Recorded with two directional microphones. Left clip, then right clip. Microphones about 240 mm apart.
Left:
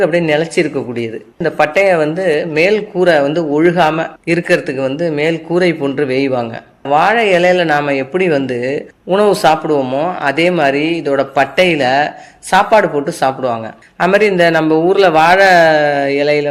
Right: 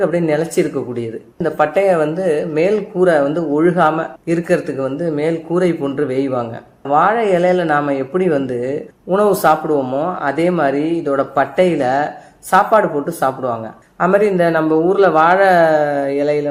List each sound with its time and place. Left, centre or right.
0.0 s speech: left